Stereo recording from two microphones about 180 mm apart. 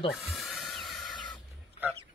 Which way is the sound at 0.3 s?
Centre (ahead or behind).